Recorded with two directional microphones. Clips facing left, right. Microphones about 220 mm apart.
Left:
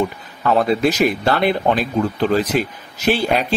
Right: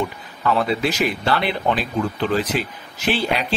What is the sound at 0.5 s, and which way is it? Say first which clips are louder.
Speech: left 4 dB; 45° left (ahead or behind).